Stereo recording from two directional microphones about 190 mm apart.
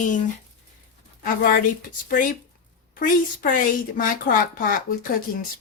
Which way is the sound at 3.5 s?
45° left (ahead or behind).